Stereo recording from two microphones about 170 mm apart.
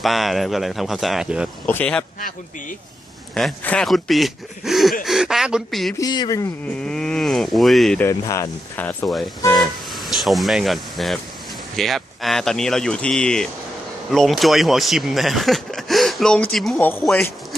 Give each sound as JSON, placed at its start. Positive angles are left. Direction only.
{"t": 0.0, "sound": "speech", "side_deg": 0}
{"t": 1.6, "sound": "speech", "side_deg": 10}
{"t": 2.1, "sound": "a man's voice", "side_deg": 50}
{"t": 3.3, "sound": "speech", "side_deg": 5}
{"t": 6.0, "sound": "speech", "side_deg": 25}
{"t": 6.7, "sound": "speech", "side_deg": 5}
{"t": 8.0, "sound": "speech", "side_deg": 15}